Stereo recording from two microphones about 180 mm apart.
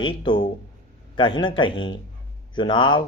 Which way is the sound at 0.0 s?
25° left (ahead or behind).